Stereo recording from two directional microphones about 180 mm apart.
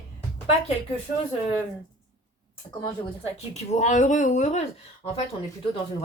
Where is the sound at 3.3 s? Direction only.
40° left (ahead or behind).